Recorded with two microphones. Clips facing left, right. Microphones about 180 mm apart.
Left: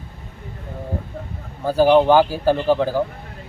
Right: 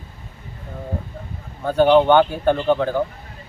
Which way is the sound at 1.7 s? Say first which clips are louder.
Even; 5° left (ahead or behind).